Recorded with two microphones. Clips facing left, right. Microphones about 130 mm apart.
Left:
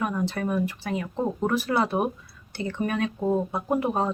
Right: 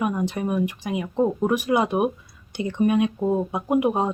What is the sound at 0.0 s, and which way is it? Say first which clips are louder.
Speech: right 3 dB; 15° right (ahead or behind).